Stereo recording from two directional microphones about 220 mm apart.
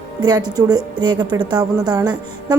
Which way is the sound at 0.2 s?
20° right (ahead or behind).